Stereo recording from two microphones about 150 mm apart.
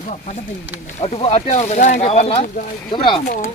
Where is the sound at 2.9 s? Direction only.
30° left (ahead or behind).